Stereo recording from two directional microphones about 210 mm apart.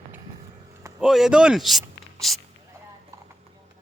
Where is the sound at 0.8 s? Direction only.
15° right (ahead or behind).